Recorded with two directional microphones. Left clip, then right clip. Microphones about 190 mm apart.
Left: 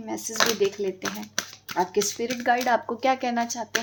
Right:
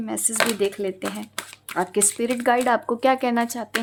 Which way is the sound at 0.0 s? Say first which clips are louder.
Right 1 dB; 40° right (ahead or behind).